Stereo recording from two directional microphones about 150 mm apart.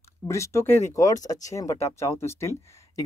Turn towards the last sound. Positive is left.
turn(degrees=15)  # may be behind; listen again after turning